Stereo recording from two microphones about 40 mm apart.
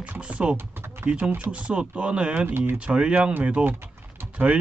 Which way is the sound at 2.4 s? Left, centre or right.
Right.